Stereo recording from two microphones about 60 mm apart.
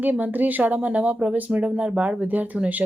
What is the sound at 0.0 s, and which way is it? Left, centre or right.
Speech, right.